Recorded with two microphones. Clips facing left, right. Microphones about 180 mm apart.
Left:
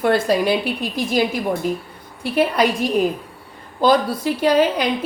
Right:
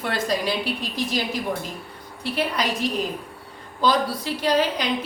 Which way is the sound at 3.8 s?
50° left (ahead or behind).